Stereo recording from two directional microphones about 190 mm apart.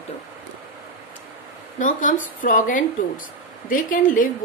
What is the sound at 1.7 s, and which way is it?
Speech, 45° left (ahead or behind).